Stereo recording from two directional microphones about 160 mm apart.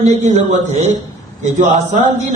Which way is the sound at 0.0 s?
45° right (ahead or behind).